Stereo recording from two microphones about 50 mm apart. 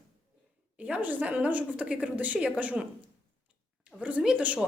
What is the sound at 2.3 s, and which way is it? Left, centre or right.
Speech, centre.